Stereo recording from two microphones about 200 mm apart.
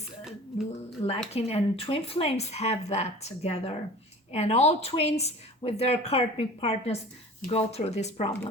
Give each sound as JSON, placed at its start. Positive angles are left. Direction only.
{"t": 0.3, "sound": "speech", "side_deg": 0}
{"t": 1.3, "sound": "speech", "side_deg": 30}